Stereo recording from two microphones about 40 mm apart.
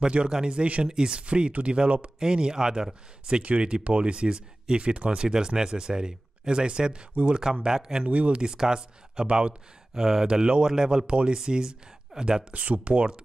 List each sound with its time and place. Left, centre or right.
0.0 s speech: right
1.2 s speech: right
2.1 s speech: centre
8.0 s speech: right
8.5 s speech: centre
9.9 s speech: centre
10.2 s speech: right
11.1 s speech: right
11.3 s speech: centre
12.5 s speech: right